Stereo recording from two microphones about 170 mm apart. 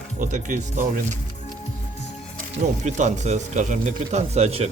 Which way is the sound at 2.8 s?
45° right (ahead or behind).